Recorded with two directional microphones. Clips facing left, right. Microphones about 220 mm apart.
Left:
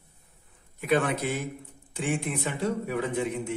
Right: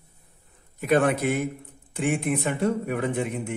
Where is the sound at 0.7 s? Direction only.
45° right (ahead or behind).